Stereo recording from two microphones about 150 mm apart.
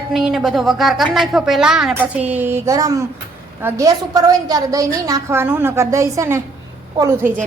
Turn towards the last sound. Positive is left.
turn(degrees=-20)  # may be behind; listen again after turning